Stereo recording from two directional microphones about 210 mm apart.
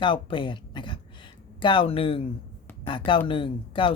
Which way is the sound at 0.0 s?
25° left (ahead or behind).